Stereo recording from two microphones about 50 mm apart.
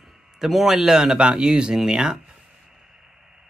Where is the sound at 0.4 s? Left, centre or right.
Centre.